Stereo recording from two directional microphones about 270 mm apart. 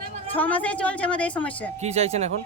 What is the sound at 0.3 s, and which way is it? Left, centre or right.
Speech, centre.